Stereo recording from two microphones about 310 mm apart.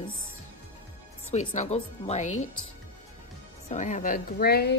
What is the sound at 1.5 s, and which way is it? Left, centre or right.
Speech, left.